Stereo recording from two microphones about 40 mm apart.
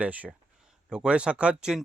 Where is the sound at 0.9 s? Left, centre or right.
Right.